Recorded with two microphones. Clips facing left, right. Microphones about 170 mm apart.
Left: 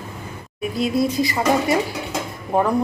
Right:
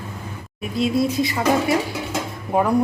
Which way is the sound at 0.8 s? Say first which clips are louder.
Even; centre (ahead or behind).